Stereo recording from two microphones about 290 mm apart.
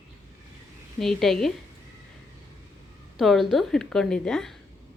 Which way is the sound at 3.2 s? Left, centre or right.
Centre.